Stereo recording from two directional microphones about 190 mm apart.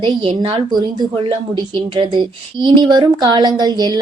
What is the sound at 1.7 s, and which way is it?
Speech, 25° right (ahead or behind).